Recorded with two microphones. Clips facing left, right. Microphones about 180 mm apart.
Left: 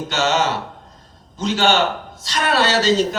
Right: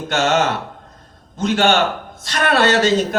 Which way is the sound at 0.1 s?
55° right (ahead or behind).